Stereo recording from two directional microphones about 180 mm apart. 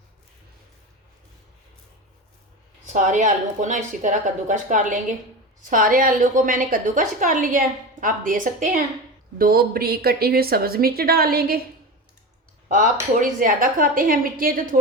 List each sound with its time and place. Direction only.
2.8 s a woman's voice: 45° right (ahead or behind)
12.6 s a woman's voice: 45° right (ahead or behind)